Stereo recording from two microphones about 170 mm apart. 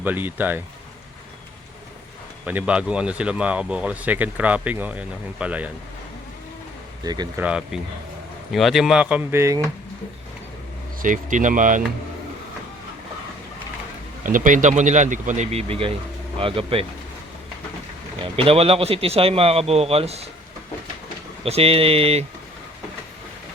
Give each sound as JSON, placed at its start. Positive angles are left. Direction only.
{"t": 0.0, "sound": "speech", "side_deg": -10}
{"t": 2.5, "sound": "speech", "side_deg": -10}
{"t": 7.0, "sound": "speech", "side_deg": -25}
{"t": 7.3, "sound": "speech", "side_deg": -5}
{"t": 11.0, "sound": "speech", "side_deg": -50}
{"t": 14.3, "sound": "a man's voice", "side_deg": -50}
{"t": 18.3, "sound": "a man's voice", "side_deg": -35}
{"t": 21.4, "sound": "a man's voice", "side_deg": -35}